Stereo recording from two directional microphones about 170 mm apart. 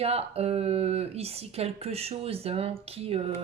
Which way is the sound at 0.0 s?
35° right (ahead or behind).